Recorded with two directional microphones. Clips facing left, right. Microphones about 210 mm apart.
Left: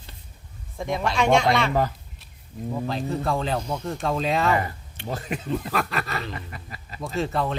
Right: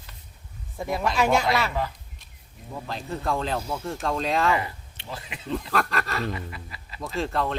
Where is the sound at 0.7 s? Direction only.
5° right (ahead or behind).